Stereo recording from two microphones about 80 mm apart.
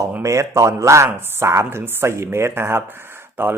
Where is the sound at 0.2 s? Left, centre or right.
Right.